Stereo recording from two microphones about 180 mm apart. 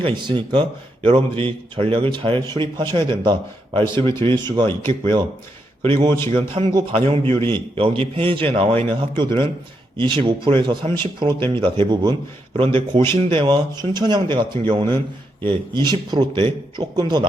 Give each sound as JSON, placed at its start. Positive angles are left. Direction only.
{"t": 0.0, "sound": "a man's voice", "side_deg": -25}
{"t": 7.3, "sound": "a man's voice", "side_deg": 15}
{"t": 7.5, "sound": "a man's voice", "side_deg": -30}